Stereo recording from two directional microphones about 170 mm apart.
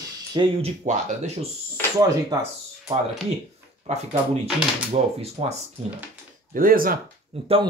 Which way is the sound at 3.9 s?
40° right (ahead or behind).